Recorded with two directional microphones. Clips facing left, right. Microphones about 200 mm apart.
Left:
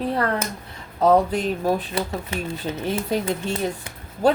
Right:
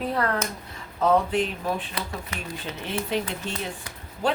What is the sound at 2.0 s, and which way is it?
Speech, 25° left (ahead or behind).